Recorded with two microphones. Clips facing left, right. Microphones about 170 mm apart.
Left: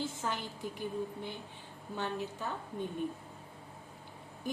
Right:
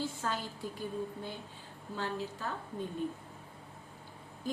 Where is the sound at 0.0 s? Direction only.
20° left (ahead or behind).